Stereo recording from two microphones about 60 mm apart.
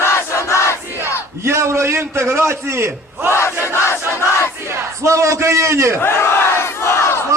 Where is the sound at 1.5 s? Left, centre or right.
Right.